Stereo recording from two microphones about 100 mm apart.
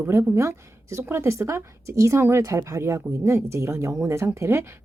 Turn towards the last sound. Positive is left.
turn(degrees=-25)  # may be behind; listen again after turning